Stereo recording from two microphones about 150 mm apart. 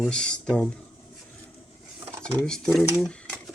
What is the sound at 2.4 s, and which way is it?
Speech, centre (ahead or behind).